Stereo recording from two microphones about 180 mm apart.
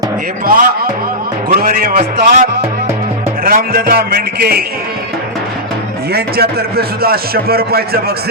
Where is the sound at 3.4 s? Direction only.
55° right (ahead or behind).